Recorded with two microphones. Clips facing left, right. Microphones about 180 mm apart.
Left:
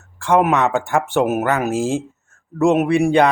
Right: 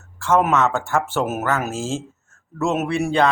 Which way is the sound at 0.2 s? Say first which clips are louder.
Left 2 dB; 15° left (ahead or behind).